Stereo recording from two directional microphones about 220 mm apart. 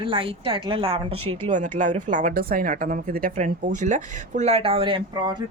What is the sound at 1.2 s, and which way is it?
Speech, 85° right.